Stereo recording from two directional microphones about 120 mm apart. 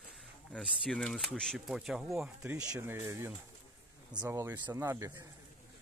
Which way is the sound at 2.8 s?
20° right (ahead or behind).